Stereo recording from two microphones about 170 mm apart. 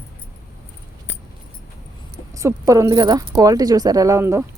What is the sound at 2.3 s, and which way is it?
A woman's voice, 20° right (ahead or behind).